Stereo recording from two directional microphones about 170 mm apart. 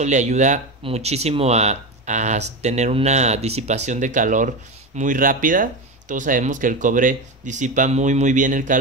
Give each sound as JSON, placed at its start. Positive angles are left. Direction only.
{"t": 0.0, "sound": "speech", "side_deg": -45}